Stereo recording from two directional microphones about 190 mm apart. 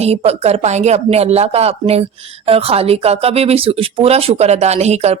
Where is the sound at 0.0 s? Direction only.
35° right (ahead or behind).